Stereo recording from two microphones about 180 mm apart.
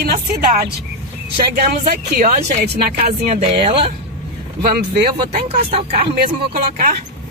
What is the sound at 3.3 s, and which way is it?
Speech, 30° right (ahead or behind).